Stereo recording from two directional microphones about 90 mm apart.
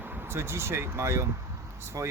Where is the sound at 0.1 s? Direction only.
25° right (ahead or behind).